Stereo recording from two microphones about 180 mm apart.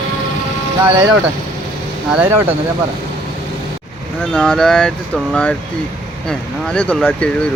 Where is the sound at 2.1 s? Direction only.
10° right (ahead or behind).